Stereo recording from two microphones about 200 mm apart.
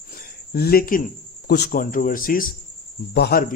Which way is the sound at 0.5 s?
50° left (ahead or behind).